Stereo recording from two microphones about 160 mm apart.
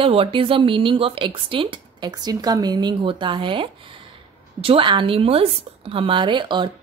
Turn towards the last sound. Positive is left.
turn(degrees=-30)  # may be behind; listen again after turning